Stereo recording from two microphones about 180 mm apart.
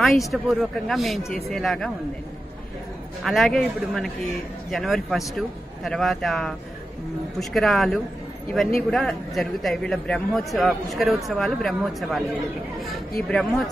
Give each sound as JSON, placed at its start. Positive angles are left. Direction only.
{"t": 0.0, "sound": "a man's voice", "side_deg": 0}
{"t": 3.3, "sound": "a man's voice", "side_deg": 0}
{"t": 13.3, "sound": "a man's voice", "side_deg": 0}